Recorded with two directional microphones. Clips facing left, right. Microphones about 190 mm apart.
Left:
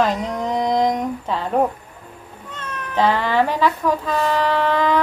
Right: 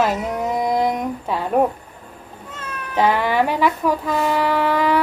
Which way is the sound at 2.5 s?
10° right (ahead or behind).